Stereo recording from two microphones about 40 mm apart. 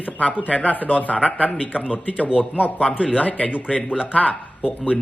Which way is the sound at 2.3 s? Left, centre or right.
Right.